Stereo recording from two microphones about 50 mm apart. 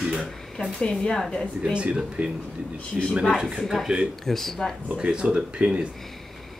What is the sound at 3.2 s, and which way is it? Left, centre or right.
Speech, centre.